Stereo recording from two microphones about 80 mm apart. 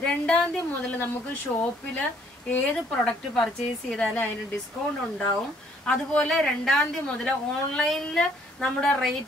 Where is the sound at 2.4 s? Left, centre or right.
Centre.